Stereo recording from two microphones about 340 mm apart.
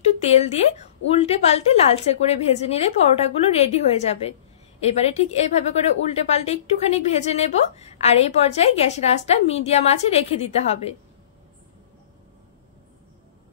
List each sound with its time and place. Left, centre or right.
0.0 s a woman's voice: centre